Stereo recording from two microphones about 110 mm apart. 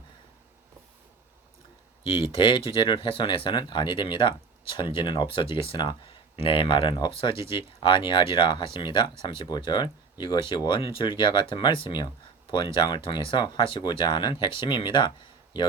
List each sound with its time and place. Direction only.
2.0 s speech: 55° left (ahead or behind)